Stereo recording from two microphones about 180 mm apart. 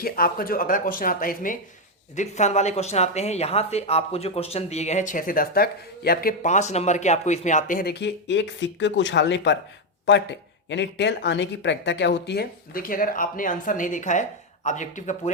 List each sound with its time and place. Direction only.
0.0 s speech: 55° left (ahead or behind)
2.1 s speech: 40° left (ahead or behind)